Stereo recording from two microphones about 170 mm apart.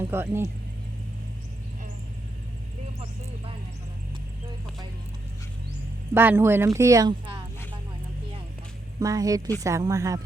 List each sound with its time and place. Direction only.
0.0 s speech: 15° right (ahead or behind)
6.1 s speech: 10° right (ahead or behind)
9.0 s speech: 20° right (ahead or behind)